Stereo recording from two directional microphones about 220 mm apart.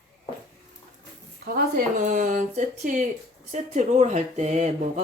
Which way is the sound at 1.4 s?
40° right (ahead or behind).